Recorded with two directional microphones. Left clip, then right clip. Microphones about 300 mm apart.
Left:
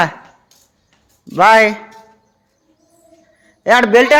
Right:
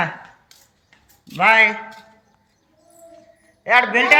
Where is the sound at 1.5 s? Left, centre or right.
Centre.